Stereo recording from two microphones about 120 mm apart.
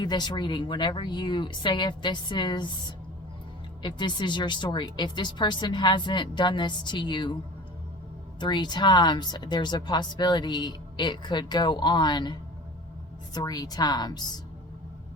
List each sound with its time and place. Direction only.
0.0 s speech: 35° left (ahead or behind)
3.8 s speech: 40° left (ahead or behind)
8.4 s speech: 40° left (ahead or behind)